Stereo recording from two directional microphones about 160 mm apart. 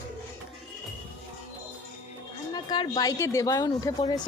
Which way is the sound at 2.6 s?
25° left (ahead or behind).